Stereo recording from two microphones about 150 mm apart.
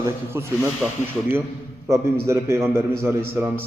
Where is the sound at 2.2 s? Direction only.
20° right (ahead or behind).